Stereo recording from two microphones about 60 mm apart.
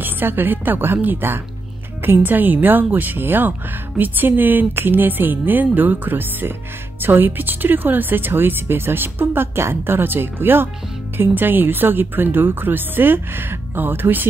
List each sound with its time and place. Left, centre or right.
0.0 s speech: right